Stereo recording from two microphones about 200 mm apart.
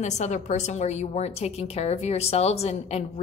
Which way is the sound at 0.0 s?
35° left (ahead or behind).